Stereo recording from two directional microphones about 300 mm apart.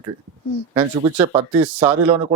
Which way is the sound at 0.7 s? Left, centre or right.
Centre.